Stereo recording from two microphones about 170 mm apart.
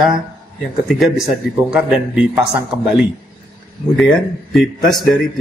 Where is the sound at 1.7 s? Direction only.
5° right (ahead or behind).